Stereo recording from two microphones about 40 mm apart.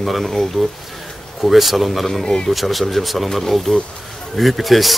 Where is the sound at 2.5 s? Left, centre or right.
Centre.